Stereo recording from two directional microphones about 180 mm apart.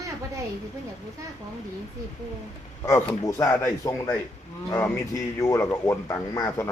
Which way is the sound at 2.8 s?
15° left (ahead or behind).